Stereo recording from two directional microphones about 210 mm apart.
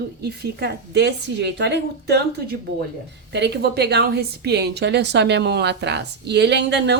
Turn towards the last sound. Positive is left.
turn(degrees=-55)  # may be behind; listen again after turning